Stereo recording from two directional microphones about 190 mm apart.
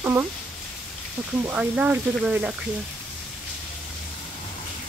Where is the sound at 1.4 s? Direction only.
5° right (ahead or behind).